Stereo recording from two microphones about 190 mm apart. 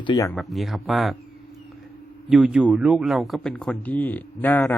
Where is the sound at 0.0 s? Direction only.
25° left (ahead or behind).